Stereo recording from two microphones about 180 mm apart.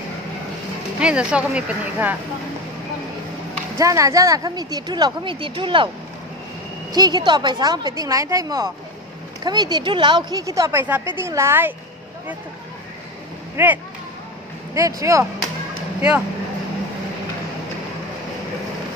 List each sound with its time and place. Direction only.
0.9 s a woman's voice: 5° right (ahead or behind)
3.7 s speech: 15° right (ahead or behind)
6.9 s a woman's voice: 25° right (ahead or behind)
13.6 s a woman's voice: 10° right (ahead or behind)